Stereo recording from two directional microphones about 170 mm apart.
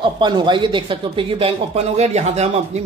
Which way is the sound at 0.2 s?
30° right (ahead or behind).